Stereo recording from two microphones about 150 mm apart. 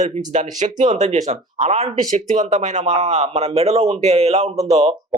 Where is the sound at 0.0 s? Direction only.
55° right (ahead or behind).